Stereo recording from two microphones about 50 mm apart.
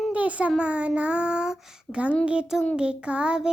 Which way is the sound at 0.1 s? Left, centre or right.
Right.